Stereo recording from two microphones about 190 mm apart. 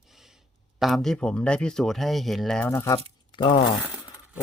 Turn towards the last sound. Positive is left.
turn(degrees=25)  # may be behind; listen again after turning